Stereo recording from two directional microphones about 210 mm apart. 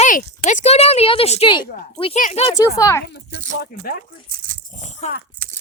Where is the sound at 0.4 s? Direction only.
30° left (ahead or behind).